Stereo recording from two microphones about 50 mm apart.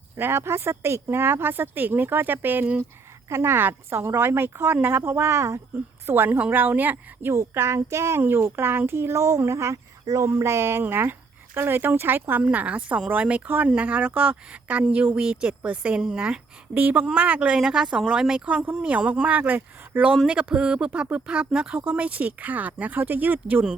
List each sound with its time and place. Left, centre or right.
0.2 s speech: right
3.2 s speech: right
3.9 s speech: right
4.3 s speech: right
6.1 s a woman's voice: right
7.3 s speech: right
9.5 s speech: right
10.8 s speech: right
12.4 s speech: right
16.7 s a woman's voice: right
17.6 s speech: centre
19.3 s a woman's voice: right
20.2 s speech: right